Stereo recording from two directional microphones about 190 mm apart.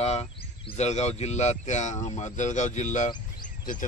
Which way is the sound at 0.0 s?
35° left (ahead or behind).